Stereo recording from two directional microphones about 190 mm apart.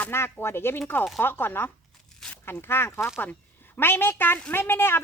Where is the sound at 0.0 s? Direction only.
10° left (ahead or behind).